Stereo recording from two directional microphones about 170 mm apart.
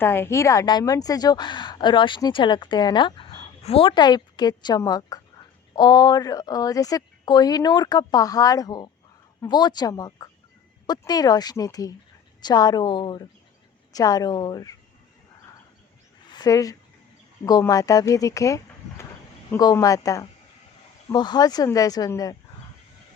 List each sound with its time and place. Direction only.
0.0 s a woman's voice: 15° left (ahead or behind)
16.3 s a woman's voice: 20° left (ahead or behind)